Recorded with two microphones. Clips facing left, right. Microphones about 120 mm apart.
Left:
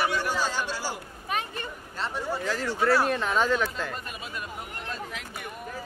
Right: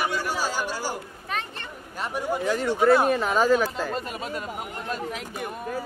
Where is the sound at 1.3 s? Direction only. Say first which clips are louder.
Left 1 dB; 10° left (ahead or behind).